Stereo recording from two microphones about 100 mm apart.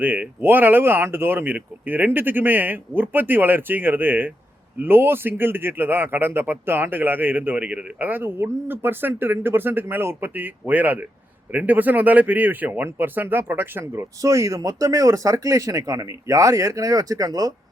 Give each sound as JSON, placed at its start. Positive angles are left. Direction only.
{"t": 0.0, "sound": "a man's voice", "side_deg": -20}